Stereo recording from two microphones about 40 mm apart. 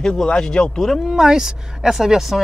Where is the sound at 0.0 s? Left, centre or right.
Centre.